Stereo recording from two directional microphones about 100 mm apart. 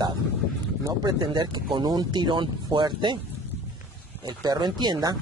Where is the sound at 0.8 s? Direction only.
40° right (ahead or behind).